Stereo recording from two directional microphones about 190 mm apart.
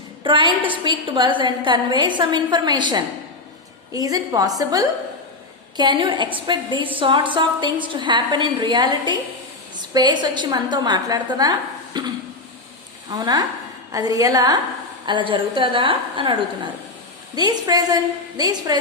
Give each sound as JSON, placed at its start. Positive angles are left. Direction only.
{"t": 0.2, "sound": "a woman's voice", "side_deg": -25}
{"t": 11.9, "sound": "a sound", "side_deg": -25}
{"t": 13.1, "sound": "a woman's voice", "side_deg": -20}
{"t": 17.3, "sound": "a woman's voice", "side_deg": -20}